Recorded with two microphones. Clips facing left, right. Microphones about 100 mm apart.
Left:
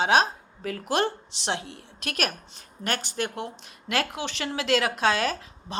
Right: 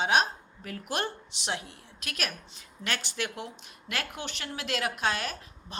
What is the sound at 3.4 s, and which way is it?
A woman's voice, 65° left (ahead or behind).